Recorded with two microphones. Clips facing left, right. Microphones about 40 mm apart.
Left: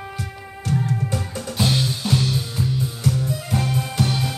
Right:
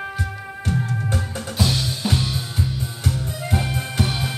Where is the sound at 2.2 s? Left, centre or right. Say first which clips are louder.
Left 2 dB; centre.